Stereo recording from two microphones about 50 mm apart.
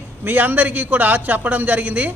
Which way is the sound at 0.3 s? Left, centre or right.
Right.